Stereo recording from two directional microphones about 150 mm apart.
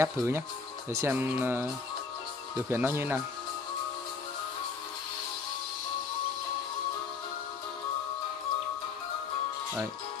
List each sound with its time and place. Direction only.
0.0 s speech: 15° right (ahead or behind)
2.7 s speech: 15° right (ahead or behind)